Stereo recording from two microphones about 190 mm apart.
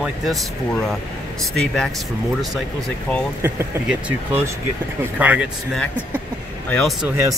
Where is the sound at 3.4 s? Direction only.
10° right (ahead or behind).